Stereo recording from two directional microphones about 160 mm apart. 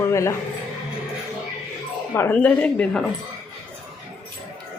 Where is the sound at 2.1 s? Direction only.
15° left (ahead or behind).